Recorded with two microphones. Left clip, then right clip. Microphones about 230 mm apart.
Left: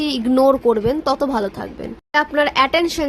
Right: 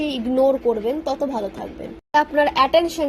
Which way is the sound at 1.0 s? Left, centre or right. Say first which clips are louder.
Left 5 dB; left.